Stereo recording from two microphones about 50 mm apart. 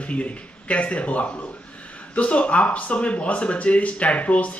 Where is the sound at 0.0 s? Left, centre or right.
Left.